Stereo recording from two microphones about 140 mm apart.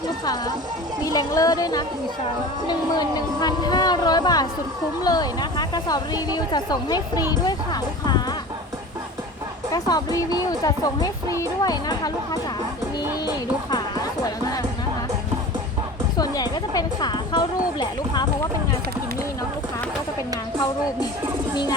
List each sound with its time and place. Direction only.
1.0 s speech: 25° left (ahead or behind)
3.4 s speech: 30° left (ahead or behind)
9.7 s speech: 25° left (ahead or behind)
13.2 s music: 30° left (ahead or behind)
16.1 s a sound: 30° left (ahead or behind)